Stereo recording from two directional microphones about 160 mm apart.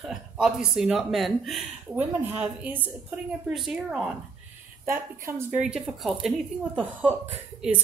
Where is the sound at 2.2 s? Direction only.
10° right (ahead or behind).